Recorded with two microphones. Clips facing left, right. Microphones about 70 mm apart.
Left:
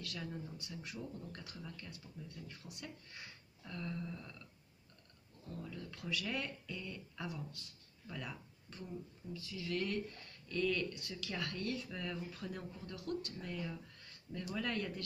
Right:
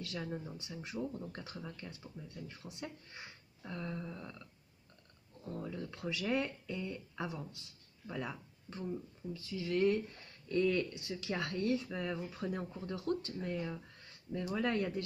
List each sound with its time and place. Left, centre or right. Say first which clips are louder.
0.0 s speech: right 4 dB; right
5.4 s speech: right 5 dB; right